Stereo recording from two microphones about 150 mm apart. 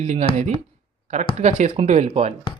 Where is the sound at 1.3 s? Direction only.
50° right (ahead or behind).